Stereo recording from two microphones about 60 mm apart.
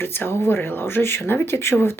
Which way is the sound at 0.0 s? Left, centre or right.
Left.